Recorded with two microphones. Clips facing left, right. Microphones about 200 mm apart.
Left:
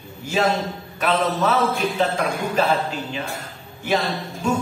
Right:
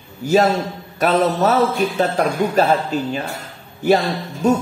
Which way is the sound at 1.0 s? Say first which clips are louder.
Right 5 dB; 40° right (ahead or behind).